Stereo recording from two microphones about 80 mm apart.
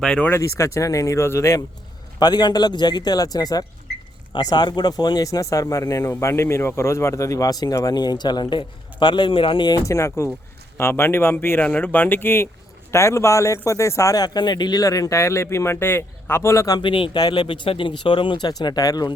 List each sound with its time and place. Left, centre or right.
0.0 s speech: centre
0.3 s speech: left
2.1 s speech: left
6.1 s speech: left
9.8 s speech: left
14.2 s speech: left
16.8 s speech: left